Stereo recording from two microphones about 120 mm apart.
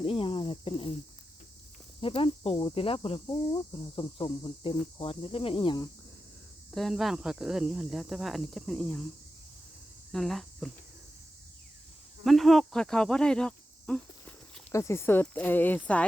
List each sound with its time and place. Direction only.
0.0 s cricket: 50° left (ahead or behind)
2.0 s speech: 50° left (ahead or behind)
3.2 s speech: 35° left (ahead or behind)
6.7 s speech: centre (ahead or behind)
10.1 s speech: centre (ahead or behind)
12.2 s cricket: centre (ahead or behind)
14.7 s speech: 25° left (ahead or behind)